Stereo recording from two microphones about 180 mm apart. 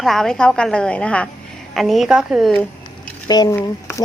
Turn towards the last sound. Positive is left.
turn(degrees=15)  # may be behind; listen again after turning